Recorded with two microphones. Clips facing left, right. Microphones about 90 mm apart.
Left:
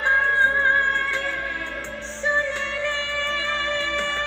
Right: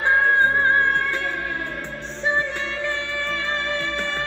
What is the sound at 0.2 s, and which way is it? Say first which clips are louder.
Music: right 2 dB; 50° right (ahead or behind).